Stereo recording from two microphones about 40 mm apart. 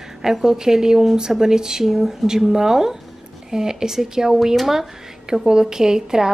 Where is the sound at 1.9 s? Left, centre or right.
Centre.